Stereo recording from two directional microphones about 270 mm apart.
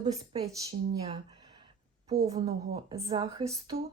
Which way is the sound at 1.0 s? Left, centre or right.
Centre.